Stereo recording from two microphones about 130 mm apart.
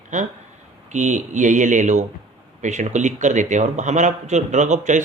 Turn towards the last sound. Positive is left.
turn(degrees=-65)  # may be behind; listen again after turning